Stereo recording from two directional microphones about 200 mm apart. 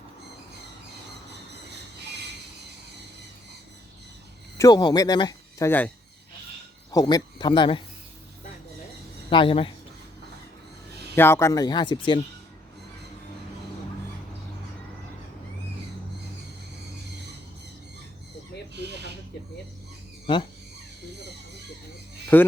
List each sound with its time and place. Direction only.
4.5 s speech: 20° left (ahead or behind)
6.9 s speech: 20° left (ahead or behind)
9.3 s speech: 25° left (ahead or behind)
11.1 s speech: 10° left (ahead or behind)
20.2 s a sound: 25° left (ahead or behind)
22.3 s speech: 10° left (ahead or behind)